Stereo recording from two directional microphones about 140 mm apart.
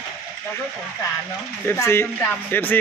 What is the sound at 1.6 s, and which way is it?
Speech, 15° left (ahead or behind).